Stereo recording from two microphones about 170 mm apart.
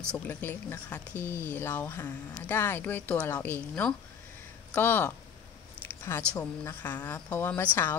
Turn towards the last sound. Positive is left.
turn(degrees=15)  # may be behind; listen again after turning